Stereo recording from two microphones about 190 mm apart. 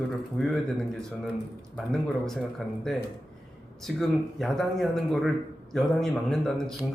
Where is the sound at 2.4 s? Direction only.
Centre (ahead or behind).